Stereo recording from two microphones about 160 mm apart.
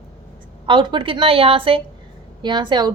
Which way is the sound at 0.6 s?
30° right (ahead or behind).